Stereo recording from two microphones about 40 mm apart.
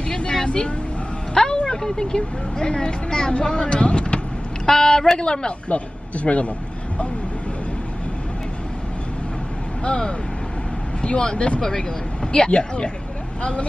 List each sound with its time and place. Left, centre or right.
0.1 s vehicle: centre
1.3 s speech: centre
4.6 s speech: centre
5.7 s a man's voice: left
9.8 s speech: left